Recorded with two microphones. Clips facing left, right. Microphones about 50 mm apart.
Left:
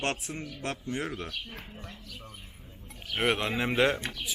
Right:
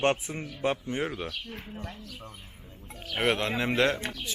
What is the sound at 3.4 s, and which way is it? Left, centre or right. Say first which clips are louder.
Speech: even; centre.